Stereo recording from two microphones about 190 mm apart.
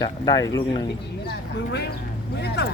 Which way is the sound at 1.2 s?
60° left (ahead or behind).